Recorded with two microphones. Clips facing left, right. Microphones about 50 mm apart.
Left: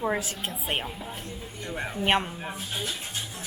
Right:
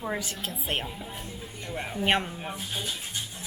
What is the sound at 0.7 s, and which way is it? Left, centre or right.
A man's voice, centre.